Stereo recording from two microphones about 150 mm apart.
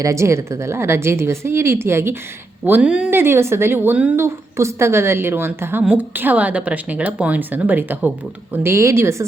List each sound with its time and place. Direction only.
0.0 s speech: 20° right (ahead or behind)